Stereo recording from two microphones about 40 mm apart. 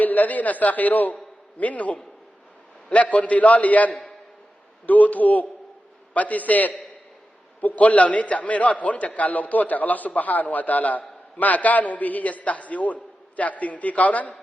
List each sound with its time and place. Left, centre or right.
0.0 s a man's voice: left